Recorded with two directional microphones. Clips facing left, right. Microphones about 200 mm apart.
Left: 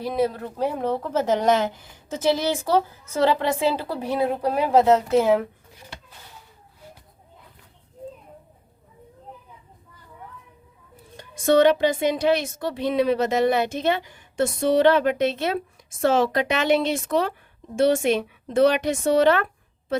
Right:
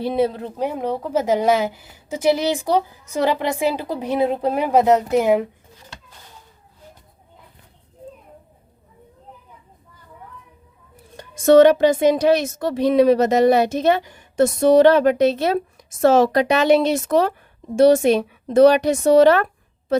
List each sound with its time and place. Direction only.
0.0 s a woman's voice: 25° right (ahead or behind)
11.2 s a woman's voice: 45° right (ahead or behind)